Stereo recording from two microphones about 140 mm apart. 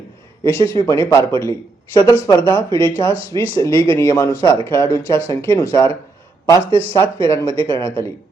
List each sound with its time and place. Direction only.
0.4 s speech: 15° left (ahead or behind)